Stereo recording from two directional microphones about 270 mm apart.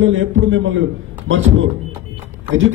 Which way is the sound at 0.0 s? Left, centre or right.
Right.